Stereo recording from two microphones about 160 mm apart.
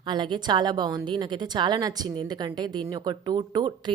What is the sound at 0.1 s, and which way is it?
A woman's voice, 30° right (ahead or behind).